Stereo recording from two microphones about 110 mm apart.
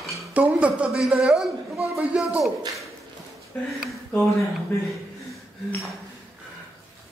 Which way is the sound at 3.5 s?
20° left (ahead or behind).